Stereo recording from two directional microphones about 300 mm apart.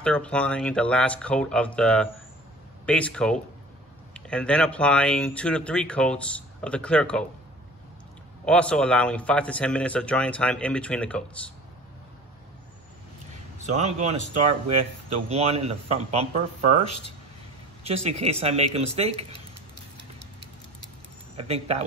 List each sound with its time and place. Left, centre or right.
0.0 s speech: centre
8.5 s speech: centre
13.7 s speech: right
15.2 s speech: right
17.8 s speech: right
21.4 s speech: centre